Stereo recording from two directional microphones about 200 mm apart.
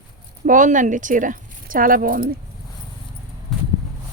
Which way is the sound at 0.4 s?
40° right (ahead or behind).